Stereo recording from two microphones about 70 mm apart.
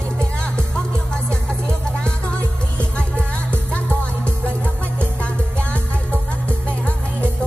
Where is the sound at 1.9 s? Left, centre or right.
Centre.